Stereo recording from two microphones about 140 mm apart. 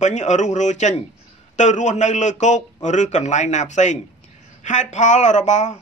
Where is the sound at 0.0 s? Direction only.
60° left (ahead or behind).